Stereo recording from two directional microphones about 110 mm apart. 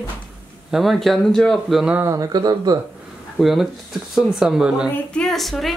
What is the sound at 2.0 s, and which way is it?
Speech, 30° right (ahead or behind).